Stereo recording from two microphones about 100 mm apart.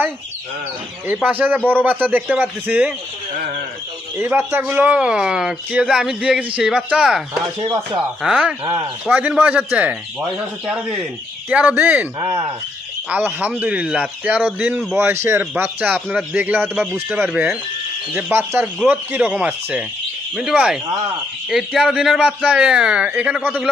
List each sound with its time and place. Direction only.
1.2 s a man's voice: 15° right (ahead or behind)
4.2 s a man's voice: 20° right (ahead or behind)
8.2 s a man's voice: 5° right (ahead or behind)
13.1 s a man's voice: 15° right (ahead or behind)
14.9 s a man's voice: 25° right (ahead or behind)